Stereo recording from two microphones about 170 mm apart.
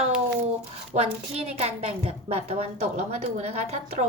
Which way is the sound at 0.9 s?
40° right (ahead or behind).